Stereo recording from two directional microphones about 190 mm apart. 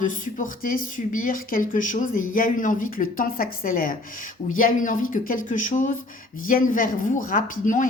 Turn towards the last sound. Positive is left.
turn(degrees=45)  # may be behind; listen again after turning